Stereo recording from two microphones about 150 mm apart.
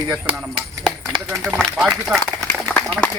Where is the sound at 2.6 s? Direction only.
5° left (ahead or behind).